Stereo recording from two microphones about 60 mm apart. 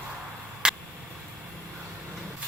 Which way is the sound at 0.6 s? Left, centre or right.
Centre.